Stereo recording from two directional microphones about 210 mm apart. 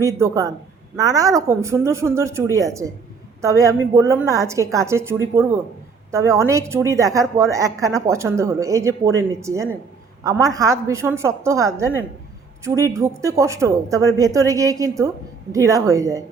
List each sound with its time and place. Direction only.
0.0 s a woman's voice: 15° right (ahead or behind)